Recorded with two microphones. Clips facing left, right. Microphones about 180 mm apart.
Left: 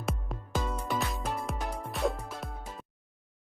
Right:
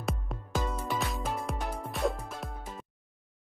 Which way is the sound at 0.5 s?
Centre (ahead or behind).